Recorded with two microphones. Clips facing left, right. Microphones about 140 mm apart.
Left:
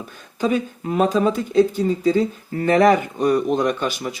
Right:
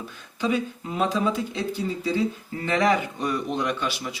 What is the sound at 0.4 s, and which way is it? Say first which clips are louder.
Speech: left 5 dB; 50° left (ahead or behind).